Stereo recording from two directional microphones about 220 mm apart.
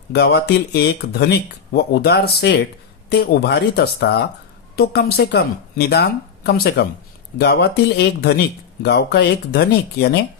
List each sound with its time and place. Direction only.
0.1 s speech: 50° left (ahead or behind)